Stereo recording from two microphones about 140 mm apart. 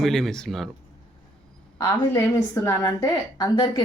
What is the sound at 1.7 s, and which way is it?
A woman's voice, 20° left (ahead or behind).